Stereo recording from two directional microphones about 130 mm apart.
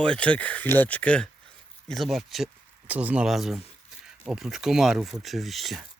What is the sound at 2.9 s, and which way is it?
Speech, 10° right (ahead or behind).